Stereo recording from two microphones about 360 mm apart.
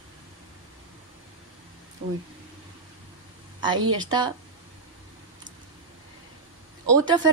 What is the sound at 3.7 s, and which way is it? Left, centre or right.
Speech, right.